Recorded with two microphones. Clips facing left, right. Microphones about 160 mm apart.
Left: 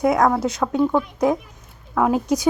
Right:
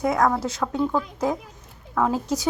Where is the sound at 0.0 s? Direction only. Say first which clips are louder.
Left 4 dB; 15° left (ahead or behind).